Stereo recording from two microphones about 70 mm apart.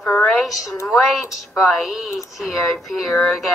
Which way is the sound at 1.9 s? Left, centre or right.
Centre.